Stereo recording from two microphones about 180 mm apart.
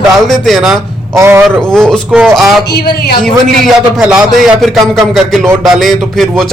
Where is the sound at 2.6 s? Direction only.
65° left (ahead or behind).